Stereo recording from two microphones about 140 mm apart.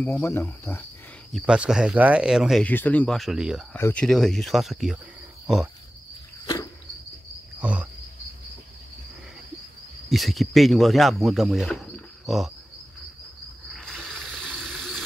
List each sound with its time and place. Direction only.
0.0 s speech: 15° left (ahead or behind)
1.3 s speech: 5° right (ahead or behind)
2.6 s speech: 10° left (ahead or behind)
3.2 s speech: 5° right (ahead or behind)
3.7 s speech: 10° left (ahead or behind); by 5.6 s 5° right (ahead or behind)
6.4 s a sound: 30° left (ahead or behind)
7.6 s cricket: 10° right (ahead or behind)
10.0 s speech: centre (ahead or behind)
13.7 s mechanisms: 5° left (ahead or behind)